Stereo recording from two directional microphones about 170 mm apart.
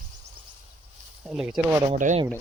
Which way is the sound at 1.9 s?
45° right (ahead or behind).